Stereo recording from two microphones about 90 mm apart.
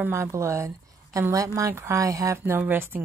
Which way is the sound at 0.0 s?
30° right (ahead or behind).